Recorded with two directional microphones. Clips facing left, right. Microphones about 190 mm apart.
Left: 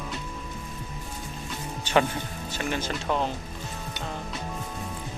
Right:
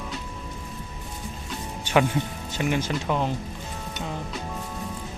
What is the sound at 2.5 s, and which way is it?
Speech, 15° right (ahead or behind).